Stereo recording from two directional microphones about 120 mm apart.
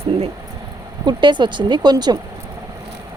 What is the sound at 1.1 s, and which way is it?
Speech, 40° right (ahead or behind).